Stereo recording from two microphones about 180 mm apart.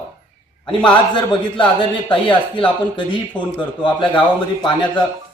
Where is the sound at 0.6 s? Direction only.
25° left (ahead or behind).